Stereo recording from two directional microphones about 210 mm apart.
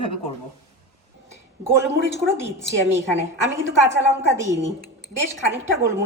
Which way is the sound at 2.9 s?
15° right (ahead or behind).